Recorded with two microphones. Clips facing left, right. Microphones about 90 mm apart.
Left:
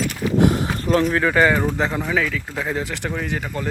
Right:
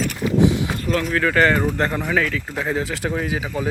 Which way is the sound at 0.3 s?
55° left (ahead or behind).